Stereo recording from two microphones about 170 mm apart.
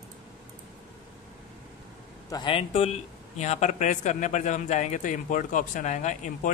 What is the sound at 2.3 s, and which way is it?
Speech, 30° left (ahead or behind).